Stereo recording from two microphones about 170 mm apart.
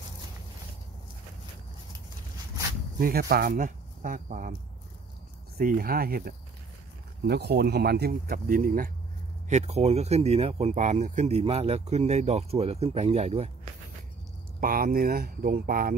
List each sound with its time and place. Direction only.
3.0 s speech: 60° right (ahead or behind)
5.6 s speech: 60° right (ahead or behind)
7.2 s speech: 70° right (ahead or behind); by 8.9 s 55° right (ahead or behind)
9.5 s speech: 40° right (ahead or behind)
14.6 s speech: 55° right (ahead or behind)